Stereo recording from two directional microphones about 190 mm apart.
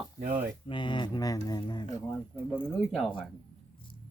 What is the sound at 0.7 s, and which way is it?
Speech, 25° left (ahead or behind).